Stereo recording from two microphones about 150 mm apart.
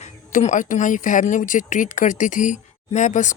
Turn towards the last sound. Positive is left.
turn(degrees=55)  # may be behind; listen again after turning